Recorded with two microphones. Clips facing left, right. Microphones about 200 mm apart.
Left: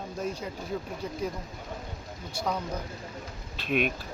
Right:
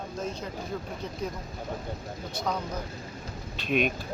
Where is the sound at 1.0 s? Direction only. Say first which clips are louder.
Left 1 dB; 10° left (ahead or behind).